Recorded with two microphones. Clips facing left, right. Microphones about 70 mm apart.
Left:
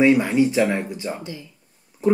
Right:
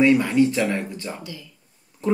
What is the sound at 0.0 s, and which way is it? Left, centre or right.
A man's voice, centre.